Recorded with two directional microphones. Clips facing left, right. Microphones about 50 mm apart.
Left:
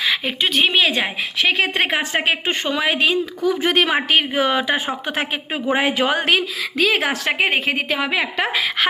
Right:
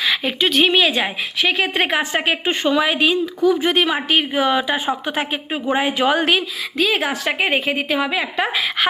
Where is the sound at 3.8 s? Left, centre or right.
Left.